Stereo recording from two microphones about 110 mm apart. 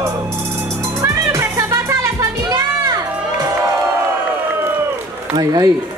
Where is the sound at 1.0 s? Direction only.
30° right (ahead or behind).